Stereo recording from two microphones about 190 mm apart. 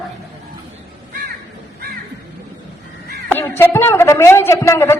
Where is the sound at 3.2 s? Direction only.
10° left (ahead or behind).